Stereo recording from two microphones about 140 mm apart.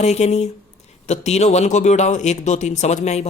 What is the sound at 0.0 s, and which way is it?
Speech, 50° left (ahead or behind).